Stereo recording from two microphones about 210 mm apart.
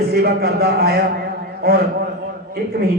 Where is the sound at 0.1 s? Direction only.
50° right (ahead or behind).